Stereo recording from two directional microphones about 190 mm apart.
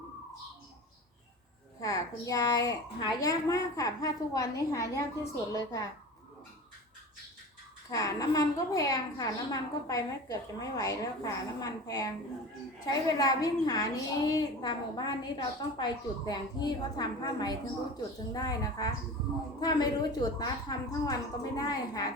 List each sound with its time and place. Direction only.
1.8 s a woman's voice: 20° left (ahead or behind)
7.9 s a woman's voice: 15° left (ahead or behind)